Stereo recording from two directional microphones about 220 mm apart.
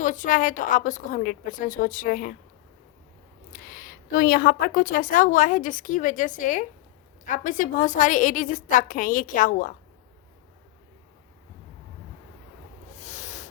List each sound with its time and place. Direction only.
0.0 s a woman's voice: 35° left (ahead or behind)
3.5 s a woman's voice: 40° left (ahead or behind)
13.0 s a sound: 30° left (ahead or behind)